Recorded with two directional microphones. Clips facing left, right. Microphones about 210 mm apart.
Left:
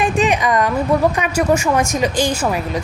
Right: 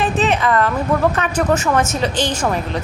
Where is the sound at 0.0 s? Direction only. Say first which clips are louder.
Left 1 dB; 15° left (ahead or behind).